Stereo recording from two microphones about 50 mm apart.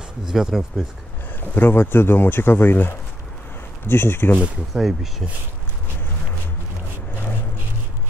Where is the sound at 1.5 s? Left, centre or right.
Left.